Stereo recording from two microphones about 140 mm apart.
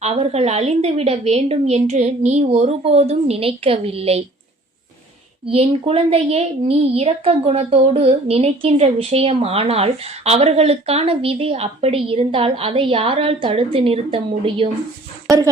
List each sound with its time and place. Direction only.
0.0 s a woman's voice: 50° right (ahead or behind)
5.5 s a woman's voice: 40° right (ahead or behind)